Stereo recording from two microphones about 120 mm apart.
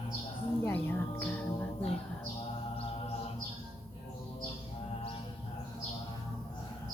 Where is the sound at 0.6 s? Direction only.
15° left (ahead or behind).